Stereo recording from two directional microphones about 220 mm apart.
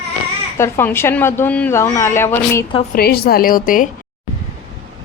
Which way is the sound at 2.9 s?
45° left (ahead or behind).